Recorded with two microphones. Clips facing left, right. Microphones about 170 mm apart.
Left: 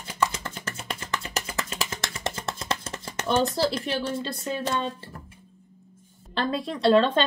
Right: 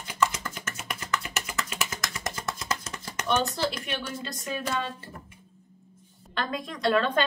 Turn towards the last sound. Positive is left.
turn(degrees=25)  # may be behind; listen again after turning